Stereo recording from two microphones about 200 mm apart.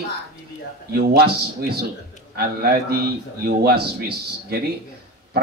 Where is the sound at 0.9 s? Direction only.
55° right (ahead or behind).